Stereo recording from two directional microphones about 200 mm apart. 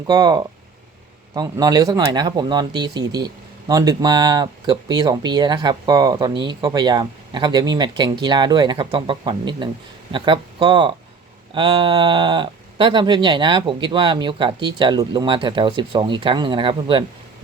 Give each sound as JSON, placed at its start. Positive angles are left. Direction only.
{"t": 0.1, "sound": "speech", "side_deg": -20}